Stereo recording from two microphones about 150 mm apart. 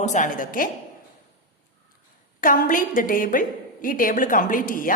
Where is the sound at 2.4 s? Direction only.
65° left (ahead or behind).